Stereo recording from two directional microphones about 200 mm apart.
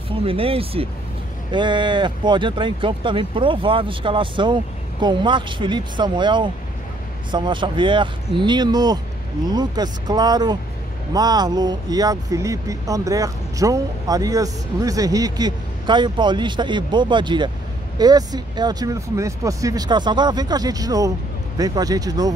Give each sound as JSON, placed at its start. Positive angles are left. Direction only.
{"t": 0.2, "sound": "speech", "side_deg": -30}